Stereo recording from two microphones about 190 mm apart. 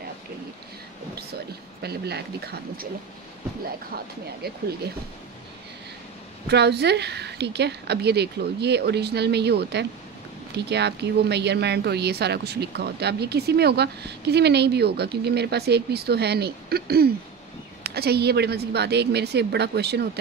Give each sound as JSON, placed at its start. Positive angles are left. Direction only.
{"t": 1.8, "sound": "a woman's voice", "side_deg": -60}
{"t": 6.4, "sound": "a woman's voice", "side_deg": -60}